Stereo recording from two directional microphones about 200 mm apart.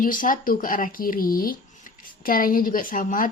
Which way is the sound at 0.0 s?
45° left (ahead or behind).